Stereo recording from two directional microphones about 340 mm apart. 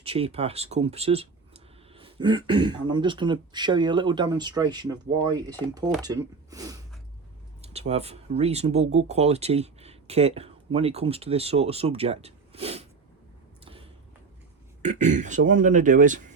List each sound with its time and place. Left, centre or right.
0.0 s speech: centre
14.8 s speech: right